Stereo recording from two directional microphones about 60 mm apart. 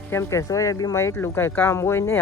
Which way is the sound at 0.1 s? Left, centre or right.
Left.